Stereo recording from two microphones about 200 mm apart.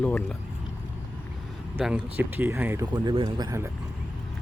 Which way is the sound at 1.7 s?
5° right (ahead or behind).